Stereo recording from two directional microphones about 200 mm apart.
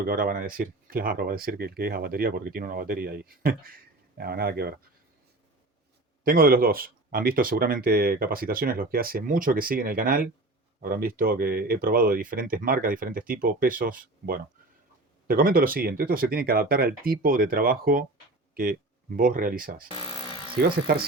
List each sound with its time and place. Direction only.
0.1 s speech: 45° right (ahead or behind)
6.2 s speech: 45° right (ahead or behind)
19.9 s tools: 30° left (ahead or behind)
20.6 s speech: 50° right (ahead or behind)